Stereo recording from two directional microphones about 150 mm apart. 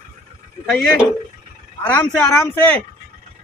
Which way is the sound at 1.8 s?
10° left (ahead or behind).